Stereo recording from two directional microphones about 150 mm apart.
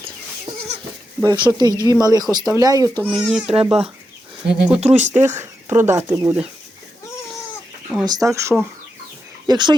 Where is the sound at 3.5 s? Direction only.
40° right (ahead or behind).